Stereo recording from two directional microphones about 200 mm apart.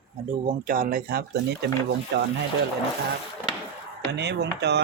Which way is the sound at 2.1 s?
60° right (ahead or behind).